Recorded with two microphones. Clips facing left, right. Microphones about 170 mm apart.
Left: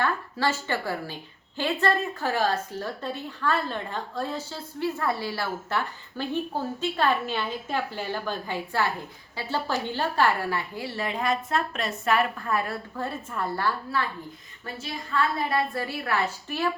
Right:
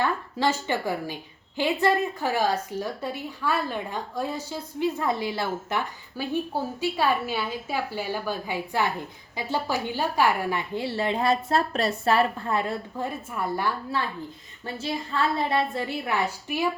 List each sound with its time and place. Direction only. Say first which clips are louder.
0.0 s a woman's voice: right 2 dB; 15° right (ahead or behind)
14.8 s a woman's voice: right 1 dB; 25° right (ahead or behind)